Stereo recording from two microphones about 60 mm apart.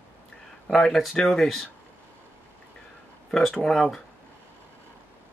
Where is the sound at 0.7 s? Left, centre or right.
Centre.